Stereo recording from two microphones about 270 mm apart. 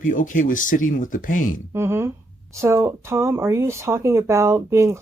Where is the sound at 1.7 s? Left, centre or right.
Centre.